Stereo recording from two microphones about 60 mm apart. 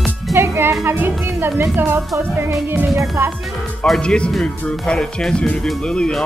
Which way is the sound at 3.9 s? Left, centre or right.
Centre.